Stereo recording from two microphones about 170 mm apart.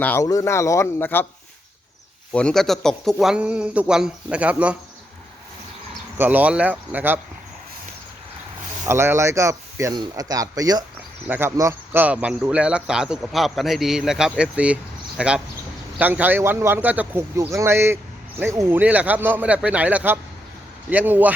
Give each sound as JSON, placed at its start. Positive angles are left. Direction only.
{"t": 0.0, "sound": "speech", "side_deg": 15}
{"t": 2.3, "sound": "speech", "side_deg": 5}
{"t": 6.1, "sound": "speech", "side_deg": -10}
{"t": 8.9, "sound": "speech", "side_deg": -15}